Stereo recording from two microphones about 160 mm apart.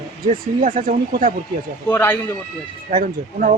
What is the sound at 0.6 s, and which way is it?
Speech, 55° right (ahead or behind).